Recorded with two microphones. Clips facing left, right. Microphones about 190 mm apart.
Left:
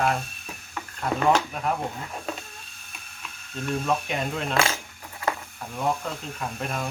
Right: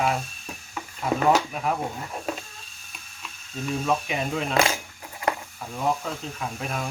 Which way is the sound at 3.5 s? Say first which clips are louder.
Even; centre (ahead or behind).